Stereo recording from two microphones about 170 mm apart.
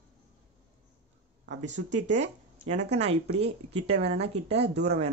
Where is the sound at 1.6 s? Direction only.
45° right (ahead or behind).